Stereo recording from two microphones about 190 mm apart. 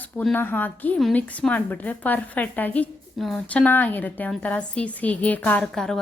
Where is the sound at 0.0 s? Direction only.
5° left (ahead or behind).